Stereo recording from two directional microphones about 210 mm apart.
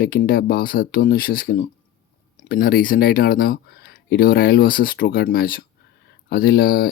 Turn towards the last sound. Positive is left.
turn(degrees=45)  # may be behind; listen again after turning